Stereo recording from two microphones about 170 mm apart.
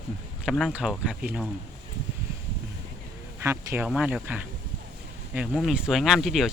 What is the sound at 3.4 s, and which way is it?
Speech, 15° right (ahead or behind).